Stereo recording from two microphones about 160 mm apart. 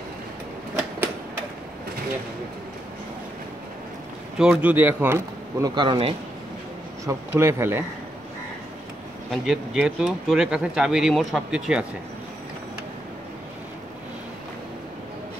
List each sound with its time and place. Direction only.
4.4 s speech: 10° right (ahead or behind)
5.8 s speech: 35° right (ahead or behind)
7.1 s speech: 15° right (ahead or behind)
9.3 s speech: 5° right (ahead or behind)